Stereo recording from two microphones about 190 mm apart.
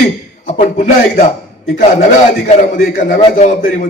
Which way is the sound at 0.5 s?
35° left (ahead or behind).